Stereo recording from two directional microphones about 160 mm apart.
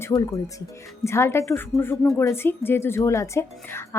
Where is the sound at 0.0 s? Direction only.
20° left (ahead or behind).